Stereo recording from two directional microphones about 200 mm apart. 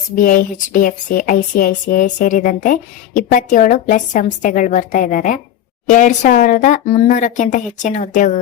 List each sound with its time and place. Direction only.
0.2 s speech: 40° left (ahead or behind)